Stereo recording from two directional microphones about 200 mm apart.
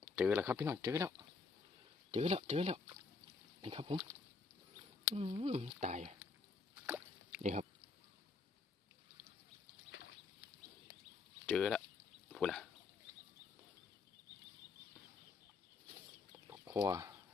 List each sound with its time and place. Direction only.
0.0 s speech: 5° right (ahead or behind)
2.0 s speech: 30° right (ahead or behind)
5.1 s speech: 30° right (ahead or behind)
7.4 s speech: 35° right (ahead or behind)
11.4 s speech: centre (ahead or behind)
16.5 s chicken: 15° right (ahead or behind)